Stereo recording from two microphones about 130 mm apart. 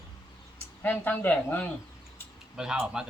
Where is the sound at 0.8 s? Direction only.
15° left (ahead or behind).